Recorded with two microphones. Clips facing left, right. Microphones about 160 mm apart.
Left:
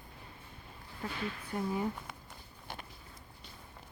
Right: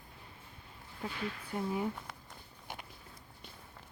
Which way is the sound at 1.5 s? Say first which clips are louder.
Left 1 dB; 5° right (ahead or behind).